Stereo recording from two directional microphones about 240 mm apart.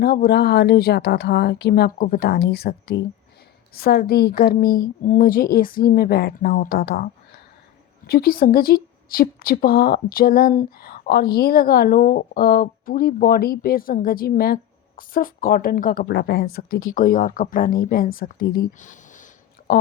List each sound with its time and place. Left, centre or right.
0.0 s a woman's voice: left